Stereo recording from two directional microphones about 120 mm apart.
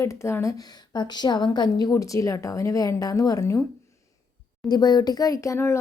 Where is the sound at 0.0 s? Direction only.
25° left (ahead or behind).